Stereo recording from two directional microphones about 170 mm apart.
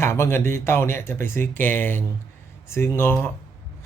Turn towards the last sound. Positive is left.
turn(degrees=15)  # may be behind; listen again after turning